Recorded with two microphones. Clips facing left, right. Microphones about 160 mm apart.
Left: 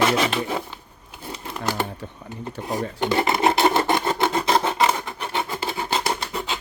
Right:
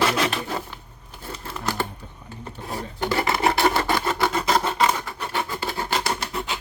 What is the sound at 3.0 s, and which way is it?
Filing, 20° left (ahead or behind).